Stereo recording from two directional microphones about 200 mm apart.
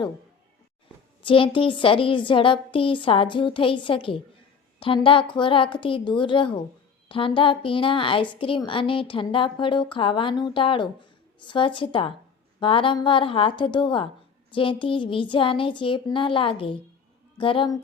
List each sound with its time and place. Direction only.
1.3 s a woman's voice: 25° left (ahead or behind)